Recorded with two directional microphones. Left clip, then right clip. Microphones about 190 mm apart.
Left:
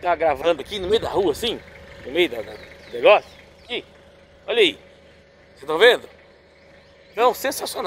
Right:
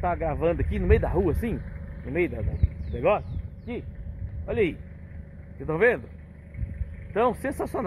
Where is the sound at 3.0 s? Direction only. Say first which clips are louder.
Left 9 dB; 20° left (ahead or behind).